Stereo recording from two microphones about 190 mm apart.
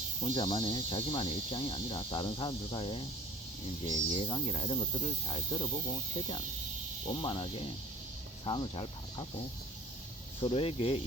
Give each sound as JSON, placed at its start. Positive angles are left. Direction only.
{"t": 0.3, "sound": "speech", "side_deg": 25}
{"t": 10.4, "sound": "speech", "side_deg": 30}